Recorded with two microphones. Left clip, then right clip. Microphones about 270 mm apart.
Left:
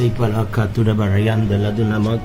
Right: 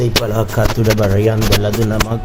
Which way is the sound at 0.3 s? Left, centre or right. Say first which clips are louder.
Right 6 dB; centre.